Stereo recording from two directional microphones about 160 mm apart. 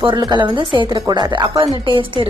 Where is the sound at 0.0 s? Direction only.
30° right (ahead or behind).